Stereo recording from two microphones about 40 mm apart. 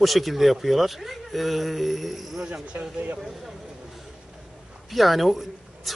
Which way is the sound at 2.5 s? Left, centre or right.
Right.